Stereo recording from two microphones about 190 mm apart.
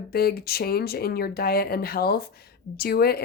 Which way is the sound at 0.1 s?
55° left (ahead or behind).